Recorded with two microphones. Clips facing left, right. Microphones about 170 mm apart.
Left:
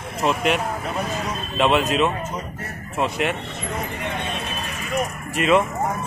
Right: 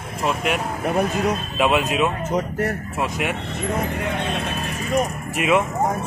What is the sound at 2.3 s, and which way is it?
Speech, 90° right.